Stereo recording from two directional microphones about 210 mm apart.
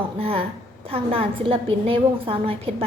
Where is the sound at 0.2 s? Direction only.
25° right (ahead or behind).